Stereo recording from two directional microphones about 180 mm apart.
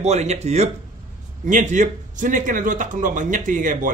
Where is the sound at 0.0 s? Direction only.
40° right (ahead or behind).